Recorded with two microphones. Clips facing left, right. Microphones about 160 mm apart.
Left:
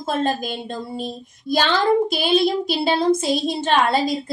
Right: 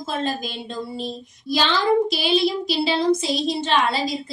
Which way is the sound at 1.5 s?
50° left (ahead or behind).